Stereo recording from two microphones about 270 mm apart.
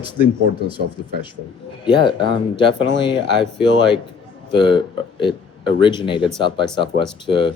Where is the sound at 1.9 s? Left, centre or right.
Centre.